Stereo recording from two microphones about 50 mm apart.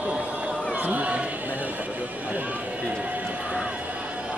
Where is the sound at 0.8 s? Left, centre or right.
Right.